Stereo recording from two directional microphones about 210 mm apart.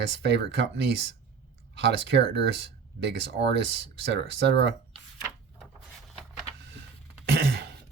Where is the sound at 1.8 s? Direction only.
55° right (ahead or behind).